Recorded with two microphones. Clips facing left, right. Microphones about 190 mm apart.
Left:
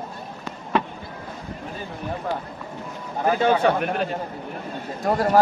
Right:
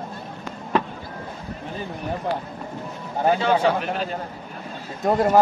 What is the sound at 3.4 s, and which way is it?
Speech, 55° left (ahead or behind).